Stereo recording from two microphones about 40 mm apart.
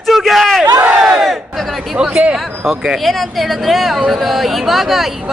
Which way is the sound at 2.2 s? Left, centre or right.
Right.